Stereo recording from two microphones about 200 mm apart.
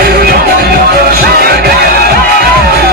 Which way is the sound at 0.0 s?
50° right (ahead or behind).